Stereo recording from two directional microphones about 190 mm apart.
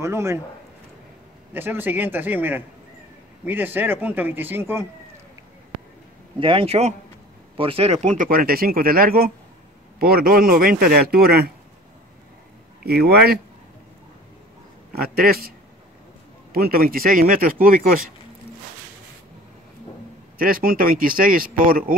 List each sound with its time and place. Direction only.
0.0 s speech: 15° right (ahead or behind)
1.5 s speech: 10° right (ahead or behind)
6.4 s speech: 30° right (ahead or behind); by 11.5 s 55° right (ahead or behind)
12.8 s speech: 55° right (ahead or behind)
15.0 s speech: 50° right (ahead or behind)
16.5 s speech: 50° right (ahead or behind)
20.3 s speech: 50° right (ahead or behind)